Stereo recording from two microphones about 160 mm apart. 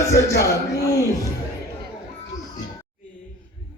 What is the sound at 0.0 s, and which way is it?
A man's voice, 20° left (ahead or behind).